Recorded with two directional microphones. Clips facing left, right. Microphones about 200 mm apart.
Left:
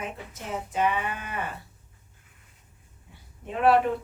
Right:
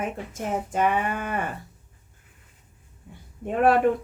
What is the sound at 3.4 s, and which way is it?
Speech, 50° right (ahead or behind).